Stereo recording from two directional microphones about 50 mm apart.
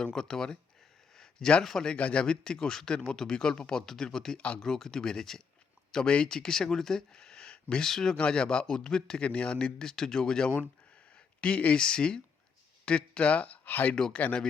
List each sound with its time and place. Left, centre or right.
0.0 s speech: centre
1.1 s a sound: centre
1.8 s speech: left
4.4 s speech: left
4.6 s speech: centre
13.7 s speech: left
13.9 s speech: centre